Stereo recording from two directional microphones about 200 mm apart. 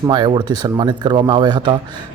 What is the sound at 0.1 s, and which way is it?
A man's voice, 25° right (ahead or behind).